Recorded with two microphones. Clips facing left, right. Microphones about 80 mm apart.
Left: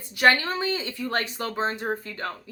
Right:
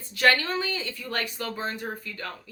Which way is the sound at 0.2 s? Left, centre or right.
Left.